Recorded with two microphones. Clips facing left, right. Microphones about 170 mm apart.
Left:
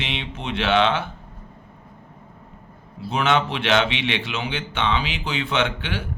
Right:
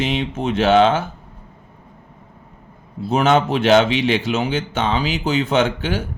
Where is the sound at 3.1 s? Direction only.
40° right (ahead or behind).